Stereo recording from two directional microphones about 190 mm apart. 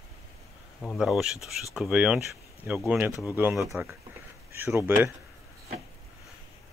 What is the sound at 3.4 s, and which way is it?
Speech, 5° right (ahead or behind).